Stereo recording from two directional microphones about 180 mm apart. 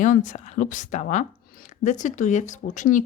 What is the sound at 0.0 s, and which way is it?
A woman's voice, 45° left (ahead or behind).